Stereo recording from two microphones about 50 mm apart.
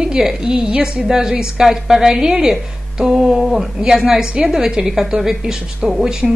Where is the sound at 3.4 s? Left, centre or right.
Centre.